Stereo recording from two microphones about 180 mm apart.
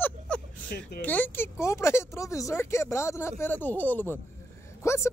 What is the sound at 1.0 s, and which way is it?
Speech, 10° left (ahead or behind).